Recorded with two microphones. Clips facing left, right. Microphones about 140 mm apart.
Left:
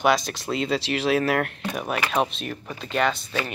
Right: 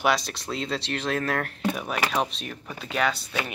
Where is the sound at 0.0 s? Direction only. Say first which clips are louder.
Left 3 dB; centre (ahead or behind).